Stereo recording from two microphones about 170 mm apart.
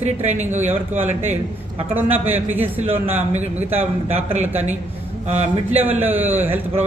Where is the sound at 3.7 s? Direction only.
10° right (ahead or behind).